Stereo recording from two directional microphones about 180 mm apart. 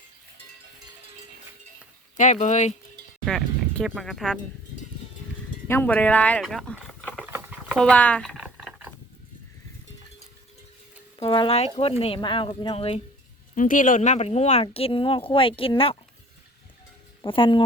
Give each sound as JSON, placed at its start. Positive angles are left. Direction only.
{"t": 2.1, "sound": "speech", "side_deg": 40}
{"t": 3.2, "sound": "speech", "side_deg": 0}
{"t": 5.6, "sound": "speech", "side_deg": 10}
{"t": 7.3, "sound": "patter", "side_deg": -10}
{"t": 7.9, "sound": "typing", "side_deg": 5}
{"t": 11.2, "sound": "speech", "side_deg": 30}
{"t": 13.6, "sound": "speech", "side_deg": 45}
{"t": 17.2, "sound": "speech", "side_deg": 30}